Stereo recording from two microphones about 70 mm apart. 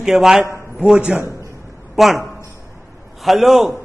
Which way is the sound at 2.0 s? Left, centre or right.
Centre.